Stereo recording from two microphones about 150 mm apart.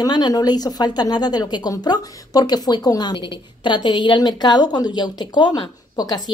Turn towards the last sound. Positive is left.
turn(degrees=25)  # may be behind; listen again after turning